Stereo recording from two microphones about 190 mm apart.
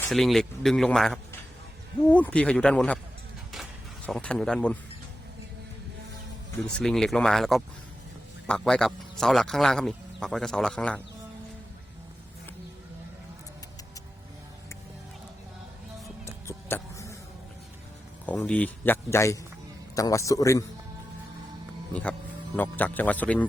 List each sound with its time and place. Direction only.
0.1 s speech: centre (ahead or behind)
3.5 s a sound: centre (ahead or behind)
6.7 s speech: 5° left (ahead or behind)
16.2 s music: 15° left (ahead or behind)
18.3 s speech: 5° left (ahead or behind)
22.8 s speech: 10° left (ahead or behind)